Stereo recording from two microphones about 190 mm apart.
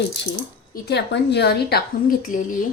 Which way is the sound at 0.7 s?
60° left (ahead or behind).